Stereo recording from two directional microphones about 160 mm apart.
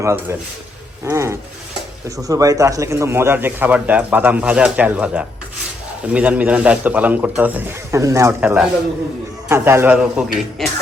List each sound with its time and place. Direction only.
0.0 s a man's voice: 15° right (ahead or behind)